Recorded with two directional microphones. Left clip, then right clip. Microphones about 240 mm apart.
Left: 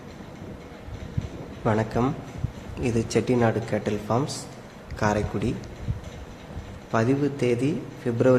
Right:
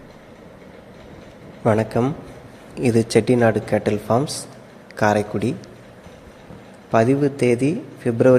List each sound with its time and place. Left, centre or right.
1.6 s a man's voice: centre
6.9 s a man's voice: centre